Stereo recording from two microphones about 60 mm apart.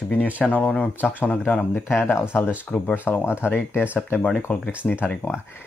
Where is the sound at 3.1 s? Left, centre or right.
Left.